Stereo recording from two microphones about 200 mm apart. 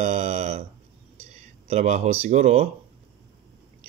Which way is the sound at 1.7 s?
35° right (ahead or behind).